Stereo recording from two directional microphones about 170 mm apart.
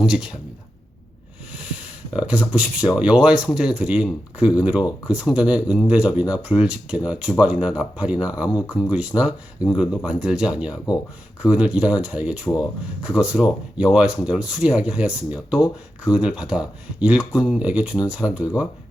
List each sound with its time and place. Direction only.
0.0 s speech: 5° right (ahead or behind)
1.5 s speech: 5° right (ahead or behind)